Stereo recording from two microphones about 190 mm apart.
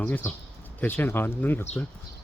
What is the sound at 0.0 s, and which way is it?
Speech, 10° left (ahead or behind).